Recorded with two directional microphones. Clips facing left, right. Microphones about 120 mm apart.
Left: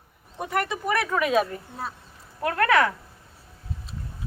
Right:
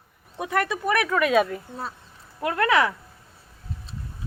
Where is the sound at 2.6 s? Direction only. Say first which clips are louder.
Even; 20° right (ahead or behind).